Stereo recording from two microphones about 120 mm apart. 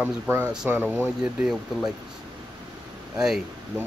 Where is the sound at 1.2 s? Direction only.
5° right (ahead or behind).